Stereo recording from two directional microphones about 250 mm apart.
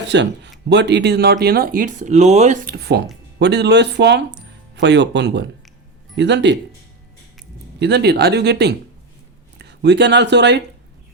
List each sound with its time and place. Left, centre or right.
0.1 s speech: right
7.8 s speech: right